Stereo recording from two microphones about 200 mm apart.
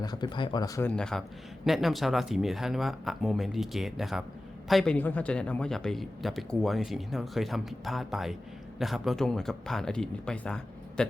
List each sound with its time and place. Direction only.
0.0 s speech: 20° left (ahead or behind); by 11.1 s 5° left (ahead or behind)